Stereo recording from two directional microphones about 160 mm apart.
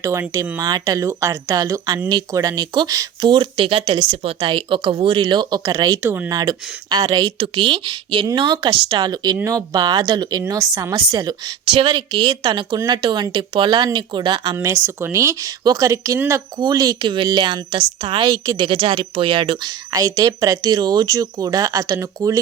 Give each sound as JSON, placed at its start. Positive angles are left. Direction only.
{"t": 0.0, "sound": "a woman's voice", "side_deg": -15}
{"t": 6.3, "sound": "a woman's voice", "side_deg": -25}